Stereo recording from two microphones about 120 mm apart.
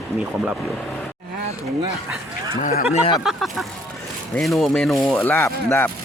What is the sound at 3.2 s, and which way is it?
Speech, centre (ahead or behind).